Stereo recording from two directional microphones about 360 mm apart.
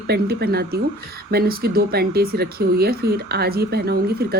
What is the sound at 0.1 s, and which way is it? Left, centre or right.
Speech, right.